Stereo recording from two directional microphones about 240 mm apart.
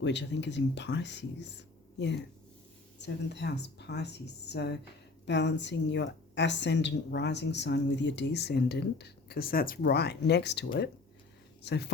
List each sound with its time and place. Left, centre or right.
0.0 s a woman's voice: left